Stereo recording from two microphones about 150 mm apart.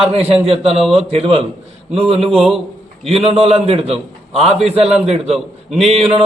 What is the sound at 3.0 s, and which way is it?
Speech, 40° right (ahead or behind).